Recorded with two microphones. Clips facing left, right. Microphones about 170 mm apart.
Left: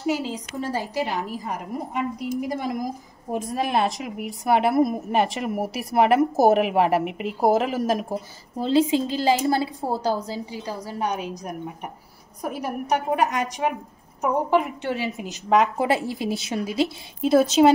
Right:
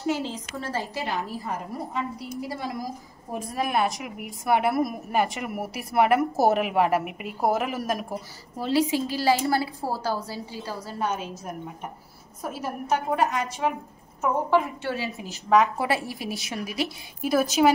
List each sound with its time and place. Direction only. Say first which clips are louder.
0.0 s a woman's voice: left 2 dB; 10° left (ahead or behind)